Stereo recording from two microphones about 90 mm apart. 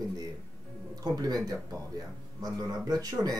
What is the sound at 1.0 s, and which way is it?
Speech, 45° right (ahead or behind).